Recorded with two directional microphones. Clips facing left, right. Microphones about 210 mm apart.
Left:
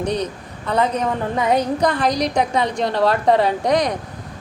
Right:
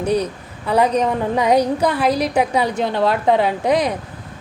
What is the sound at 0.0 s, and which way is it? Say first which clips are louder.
A woman's voice: right 3 dB; 10° right (ahead or behind).